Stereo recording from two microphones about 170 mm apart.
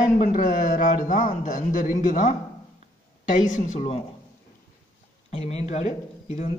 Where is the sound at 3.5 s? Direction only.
45° left (ahead or behind).